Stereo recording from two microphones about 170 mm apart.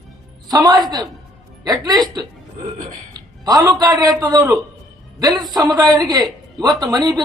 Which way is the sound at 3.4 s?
20° right (ahead or behind).